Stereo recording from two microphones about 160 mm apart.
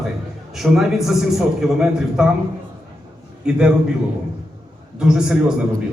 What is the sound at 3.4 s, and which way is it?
Speech, 5° right (ahead or behind).